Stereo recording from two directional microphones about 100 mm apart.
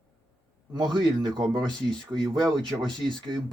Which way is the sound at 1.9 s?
5° left (ahead or behind).